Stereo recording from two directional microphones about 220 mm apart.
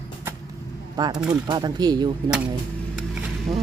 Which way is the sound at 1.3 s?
20° right (ahead or behind).